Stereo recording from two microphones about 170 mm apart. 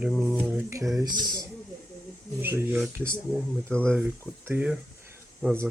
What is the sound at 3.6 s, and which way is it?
Speech, 10° left (ahead or behind).